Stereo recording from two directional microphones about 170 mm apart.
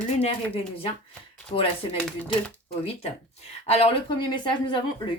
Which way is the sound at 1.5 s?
35° left (ahead or behind).